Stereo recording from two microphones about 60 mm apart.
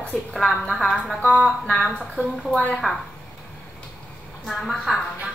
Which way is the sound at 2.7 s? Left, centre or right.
Centre.